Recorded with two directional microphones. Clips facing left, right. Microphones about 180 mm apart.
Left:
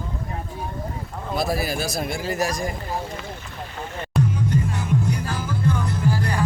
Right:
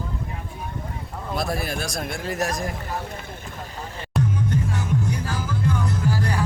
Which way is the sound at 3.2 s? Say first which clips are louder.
Left 2 dB; 50° right (ahead or behind).